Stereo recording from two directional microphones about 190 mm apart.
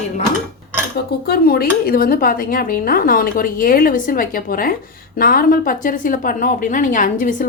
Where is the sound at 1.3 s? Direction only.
55° left (ahead or behind).